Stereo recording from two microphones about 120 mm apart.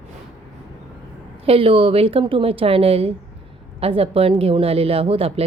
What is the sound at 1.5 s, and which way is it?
A woman's voice, 50° right (ahead or behind).